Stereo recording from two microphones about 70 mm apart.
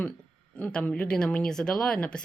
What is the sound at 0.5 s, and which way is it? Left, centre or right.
Speech, centre.